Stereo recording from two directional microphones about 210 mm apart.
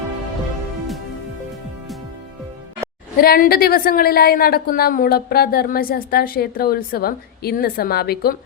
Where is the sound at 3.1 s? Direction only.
45° left (ahead or behind).